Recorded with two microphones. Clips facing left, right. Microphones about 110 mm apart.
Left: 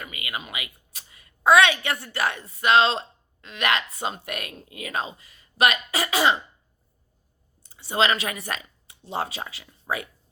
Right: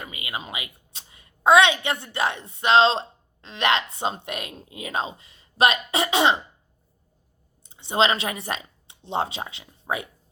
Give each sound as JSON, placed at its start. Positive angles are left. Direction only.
{"t": 0.0, "sound": "a woman's voice", "side_deg": -25}
{"t": 7.6, "sound": "speech", "side_deg": -20}